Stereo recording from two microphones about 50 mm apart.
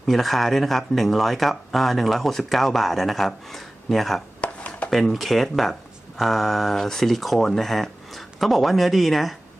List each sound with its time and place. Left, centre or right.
0.0 s speech: centre
4.4 s chopping: left
4.9 s speech: centre